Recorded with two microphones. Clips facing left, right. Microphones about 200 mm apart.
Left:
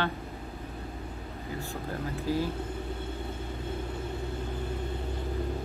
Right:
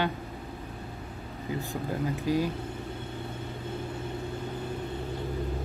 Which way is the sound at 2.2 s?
15° right (ahead or behind).